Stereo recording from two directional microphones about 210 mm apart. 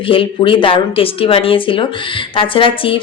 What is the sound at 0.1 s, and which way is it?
A woman's voice, 25° left (ahead or behind).